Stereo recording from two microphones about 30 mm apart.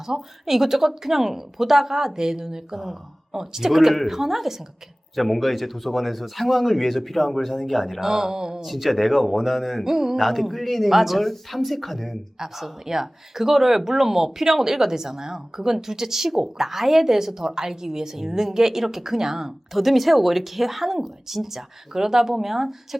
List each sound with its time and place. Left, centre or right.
0.1 s a woman's voice: centre
5.1 s speech: centre
8.0 s a sound: centre
8.6 s speech: centre
9.8 s a woman's voice: centre
10.2 s speech: centre
12.4 s a woman's voice: centre
19.7 s a woman's voice: centre